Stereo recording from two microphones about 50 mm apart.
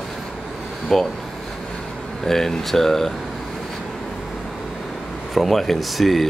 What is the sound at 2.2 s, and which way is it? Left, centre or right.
Speech, centre.